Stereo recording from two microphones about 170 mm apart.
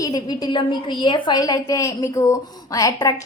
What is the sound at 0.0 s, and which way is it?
A woman's voice, 25° left (ahead or behind).